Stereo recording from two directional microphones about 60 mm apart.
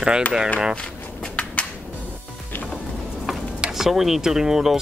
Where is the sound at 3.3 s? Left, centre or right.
Centre.